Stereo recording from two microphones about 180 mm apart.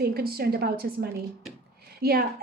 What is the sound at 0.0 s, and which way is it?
Speech, 60° right (ahead or behind).